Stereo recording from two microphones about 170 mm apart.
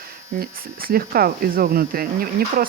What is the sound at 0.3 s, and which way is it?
Speech, 60° right (ahead or behind).